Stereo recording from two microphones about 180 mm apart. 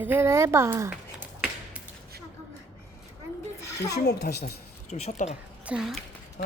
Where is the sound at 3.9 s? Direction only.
65° left (ahead or behind).